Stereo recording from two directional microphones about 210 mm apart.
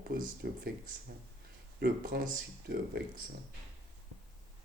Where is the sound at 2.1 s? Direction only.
50° right (ahead or behind).